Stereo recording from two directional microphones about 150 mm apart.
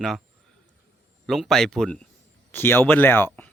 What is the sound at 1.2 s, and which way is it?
Speech, centre (ahead or behind).